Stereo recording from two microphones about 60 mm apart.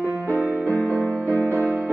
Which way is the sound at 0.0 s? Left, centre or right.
Left.